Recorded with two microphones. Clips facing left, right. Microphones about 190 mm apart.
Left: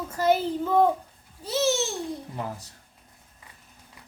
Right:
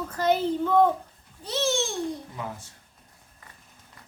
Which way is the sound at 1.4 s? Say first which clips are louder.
Left 2 dB; 5° left (ahead or behind).